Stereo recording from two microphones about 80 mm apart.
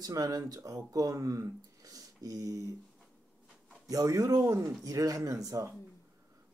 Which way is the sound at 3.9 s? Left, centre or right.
Right.